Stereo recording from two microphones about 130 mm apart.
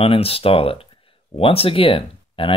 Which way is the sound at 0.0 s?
45° left (ahead or behind).